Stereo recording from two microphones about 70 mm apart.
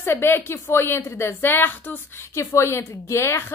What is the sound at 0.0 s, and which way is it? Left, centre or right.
A woman's voice, left.